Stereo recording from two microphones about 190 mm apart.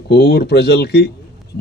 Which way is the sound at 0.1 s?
60° left (ahead or behind).